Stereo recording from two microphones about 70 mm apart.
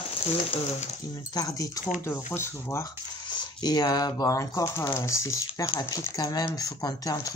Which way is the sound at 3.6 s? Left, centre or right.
Left.